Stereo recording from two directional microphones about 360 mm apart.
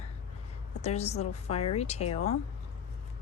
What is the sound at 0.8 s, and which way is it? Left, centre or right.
Speech, centre.